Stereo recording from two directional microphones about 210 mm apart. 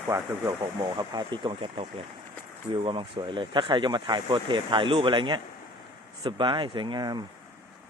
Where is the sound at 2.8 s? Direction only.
25° right (ahead or behind).